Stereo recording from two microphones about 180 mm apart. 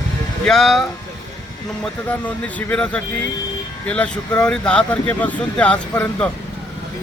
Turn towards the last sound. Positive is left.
turn(degrees=5)  # may be behind; listen again after turning